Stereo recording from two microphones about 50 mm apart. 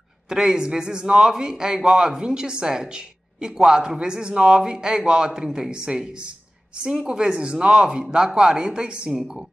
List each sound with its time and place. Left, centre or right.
0.3 s a man's voice: centre